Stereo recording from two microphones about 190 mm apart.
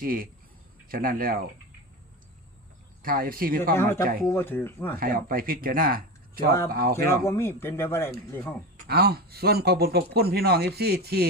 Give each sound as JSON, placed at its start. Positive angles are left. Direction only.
{"t": 0.0, "sound": "speech", "side_deg": -50}
{"t": 3.0, "sound": "speech", "side_deg": -50}
{"t": 3.8, "sound": "speech", "side_deg": 15}
{"t": 4.9, "sound": "speech", "side_deg": -50}
{"t": 7.3, "sound": "speech", "side_deg": 15}
{"t": 8.8, "sound": "speech", "side_deg": -55}